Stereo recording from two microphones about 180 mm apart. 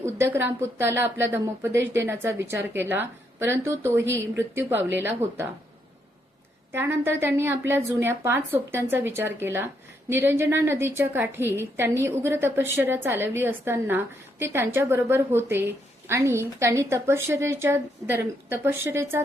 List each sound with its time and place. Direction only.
0.0 s a woman's voice: 15° right (ahead or behind)
6.7 s a woman's voice: 10° right (ahead or behind)